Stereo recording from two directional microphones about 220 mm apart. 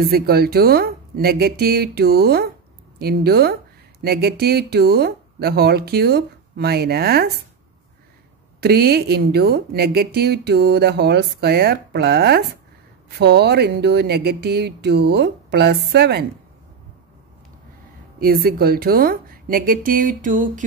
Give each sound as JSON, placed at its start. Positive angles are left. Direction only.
{"t": 0.0, "sound": "speech", "side_deg": -45}
{"t": 8.5, "sound": "speech", "side_deg": -45}
{"t": 18.2, "sound": "a woman's voice", "side_deg": -40}